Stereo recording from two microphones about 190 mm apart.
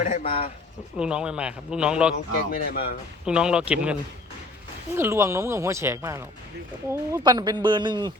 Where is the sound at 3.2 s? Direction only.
5° right (ahead or behind).